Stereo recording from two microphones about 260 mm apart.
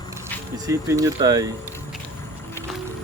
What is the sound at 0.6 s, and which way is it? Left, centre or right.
Speech, centre.